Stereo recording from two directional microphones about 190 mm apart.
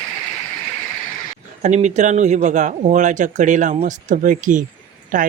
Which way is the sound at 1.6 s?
40° right (ahead or behind).